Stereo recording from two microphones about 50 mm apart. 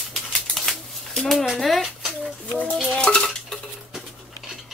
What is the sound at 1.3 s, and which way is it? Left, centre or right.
Speech, centre.